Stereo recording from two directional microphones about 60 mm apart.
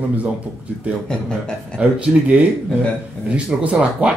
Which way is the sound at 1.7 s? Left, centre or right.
Right.